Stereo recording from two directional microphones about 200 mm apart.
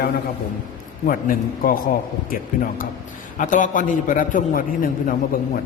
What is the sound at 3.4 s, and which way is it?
A man's voice, 40° left (ahead or behind).